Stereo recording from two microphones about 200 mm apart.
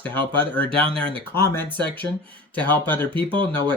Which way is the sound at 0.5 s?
5° left (ahead or behind).